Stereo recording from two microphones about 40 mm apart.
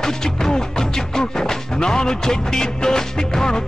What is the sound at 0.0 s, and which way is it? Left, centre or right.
Speech, centre.